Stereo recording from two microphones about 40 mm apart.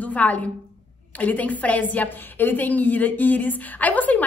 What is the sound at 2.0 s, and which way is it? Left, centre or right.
A woman's voice, left.